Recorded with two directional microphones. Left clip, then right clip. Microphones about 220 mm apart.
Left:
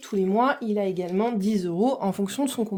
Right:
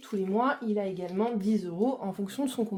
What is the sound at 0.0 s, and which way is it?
Speech, 50° left (ahead or behind).